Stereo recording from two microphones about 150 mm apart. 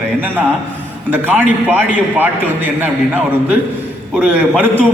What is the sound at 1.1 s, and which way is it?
A man's voice, 10° right (ahead or behind).